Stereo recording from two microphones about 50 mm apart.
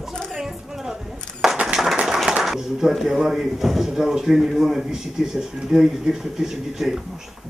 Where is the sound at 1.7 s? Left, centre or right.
Centre.